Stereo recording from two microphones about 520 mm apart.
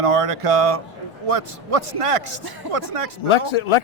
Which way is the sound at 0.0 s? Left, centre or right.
Right.